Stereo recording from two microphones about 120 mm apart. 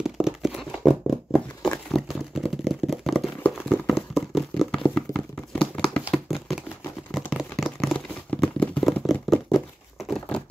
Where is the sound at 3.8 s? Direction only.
Centre (ahead or behind).